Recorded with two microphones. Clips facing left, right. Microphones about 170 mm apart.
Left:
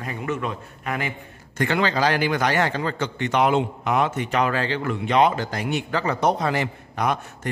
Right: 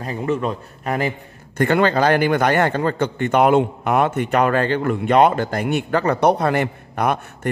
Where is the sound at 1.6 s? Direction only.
55° right (ahead or behind).